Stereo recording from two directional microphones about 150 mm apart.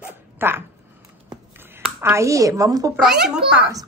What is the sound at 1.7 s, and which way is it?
Speech, 15° right (ahead or behind).